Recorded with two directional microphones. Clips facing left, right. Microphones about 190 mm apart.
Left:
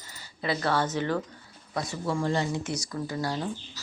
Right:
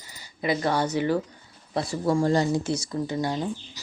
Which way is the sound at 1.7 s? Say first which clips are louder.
Right 6 dB; 30° right (ahead or behind).